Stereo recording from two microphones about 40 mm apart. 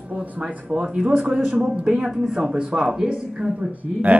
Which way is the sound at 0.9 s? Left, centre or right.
Right.